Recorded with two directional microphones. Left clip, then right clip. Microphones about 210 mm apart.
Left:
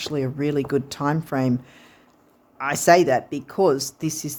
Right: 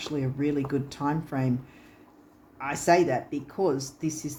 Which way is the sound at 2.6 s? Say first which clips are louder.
Left 6 dB; 50° left (ahead or behind).